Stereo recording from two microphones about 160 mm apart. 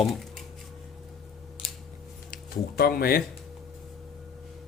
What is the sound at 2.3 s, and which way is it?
Speech, 70° left (ahead or behind).